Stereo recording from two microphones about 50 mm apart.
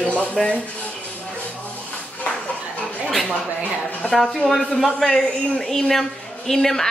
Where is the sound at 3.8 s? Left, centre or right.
Left.